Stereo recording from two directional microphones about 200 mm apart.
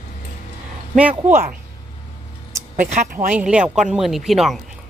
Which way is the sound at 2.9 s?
40° right (ahead or behind).